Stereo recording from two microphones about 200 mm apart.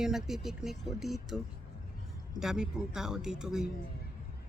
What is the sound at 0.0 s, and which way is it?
Speech, centre (ahead or behind).